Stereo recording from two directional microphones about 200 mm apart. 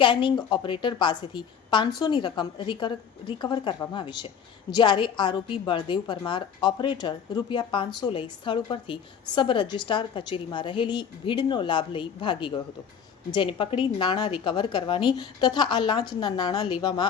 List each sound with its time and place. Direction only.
0.0 s a woman's voice: 25° left (ahead or behind)